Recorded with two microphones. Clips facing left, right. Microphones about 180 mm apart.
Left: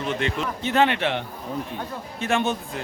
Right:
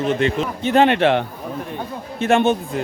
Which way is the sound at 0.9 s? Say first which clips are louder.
Right 9 dB; 80° right.